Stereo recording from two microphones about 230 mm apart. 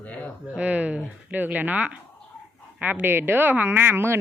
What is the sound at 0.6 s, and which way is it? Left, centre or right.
A man's voice, centre.